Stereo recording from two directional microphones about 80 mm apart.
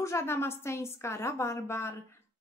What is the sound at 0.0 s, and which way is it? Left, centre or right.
A woman's voice, left.